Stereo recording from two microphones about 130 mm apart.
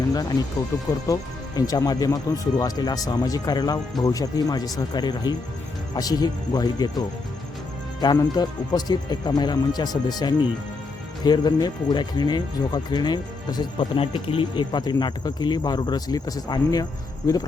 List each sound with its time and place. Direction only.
0.1 s speech: 30° left (ahead or behind)
8.0 s speech: 30° left (ahead or behind)